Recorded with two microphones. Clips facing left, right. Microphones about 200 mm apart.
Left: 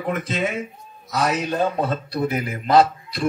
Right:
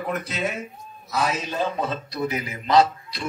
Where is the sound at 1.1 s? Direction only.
70° left (ahead or behind).